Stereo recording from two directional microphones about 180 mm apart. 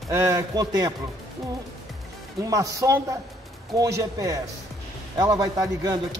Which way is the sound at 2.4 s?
20° right (ahead or behind).